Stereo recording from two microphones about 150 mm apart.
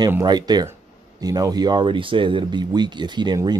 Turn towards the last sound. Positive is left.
turn(degrees=-30)  # may be behind; listen again after turning